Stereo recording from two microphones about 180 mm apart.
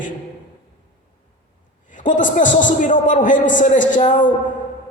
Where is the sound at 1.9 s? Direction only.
45° left (ahead or behind).